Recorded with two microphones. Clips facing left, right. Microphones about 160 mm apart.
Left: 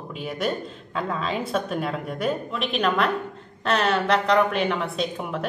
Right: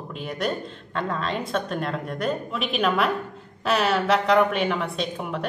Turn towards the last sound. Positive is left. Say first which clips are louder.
# left 1 dB
turn(degrees=0)  # may be behind; listen again after turning